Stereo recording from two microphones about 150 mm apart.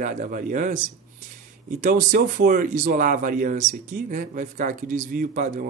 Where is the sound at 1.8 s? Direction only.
65° right (ahead or behind).